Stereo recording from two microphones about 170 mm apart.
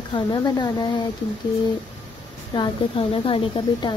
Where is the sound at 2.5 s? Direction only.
30° left (ahead or behind).